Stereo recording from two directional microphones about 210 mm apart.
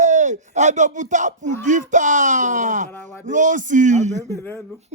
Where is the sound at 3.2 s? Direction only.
35° right (ahead or behind).